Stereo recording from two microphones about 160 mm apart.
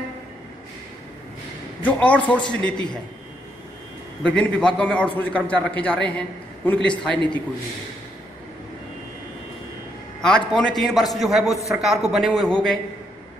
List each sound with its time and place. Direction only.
1.8 s a man's voice: 10° left (ahead or behind)
4.2 s a man's voice: 5° left (ahead or behind)
10.2 s a man's voice: 5° left (ahead or behind)